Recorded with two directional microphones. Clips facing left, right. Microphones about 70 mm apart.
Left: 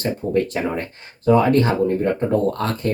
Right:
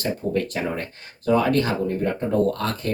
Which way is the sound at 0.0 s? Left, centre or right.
Left.